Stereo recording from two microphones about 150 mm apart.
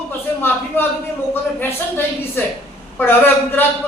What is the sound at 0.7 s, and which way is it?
Speech, 15° left (ahead or behind).